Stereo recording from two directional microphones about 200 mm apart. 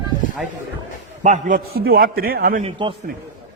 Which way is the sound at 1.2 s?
40° right (ahead or behind).